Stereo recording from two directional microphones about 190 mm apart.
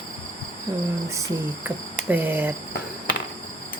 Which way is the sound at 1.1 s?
15° right (ahead or behind).